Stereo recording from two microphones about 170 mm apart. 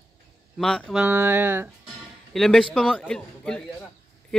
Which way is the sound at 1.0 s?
10° right (ahead or behind).